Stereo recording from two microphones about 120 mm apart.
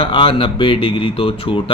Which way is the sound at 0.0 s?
45° left (ahead or behind).